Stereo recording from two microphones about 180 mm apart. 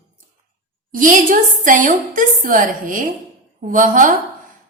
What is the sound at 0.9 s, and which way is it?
A woman's voice, 50° right (ahead or behind).